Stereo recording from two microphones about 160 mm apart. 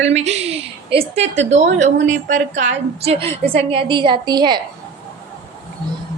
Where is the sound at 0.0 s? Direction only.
45° right (ahead or behind); by 4.6 s 25° right (ahead or behind).